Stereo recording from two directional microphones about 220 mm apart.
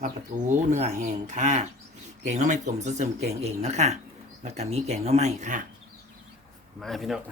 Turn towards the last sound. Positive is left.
turn(degrees=0)  # may be behind; listen again after turning